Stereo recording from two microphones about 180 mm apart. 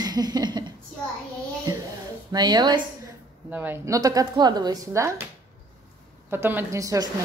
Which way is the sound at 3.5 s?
10° right (ahead or behind).